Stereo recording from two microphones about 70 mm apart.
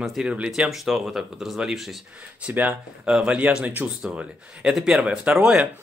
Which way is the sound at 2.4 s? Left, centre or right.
Centre.